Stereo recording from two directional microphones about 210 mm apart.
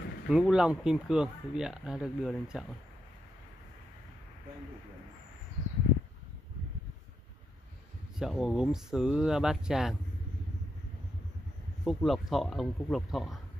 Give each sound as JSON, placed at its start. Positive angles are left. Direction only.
{"t": 0.3, "sound": "speech", "side_deg": -5}
{"t": 8.2, "sound": "speech", "side_deg": -5}
{"t": 11.8, "sound": "speech", "side_deg": 0}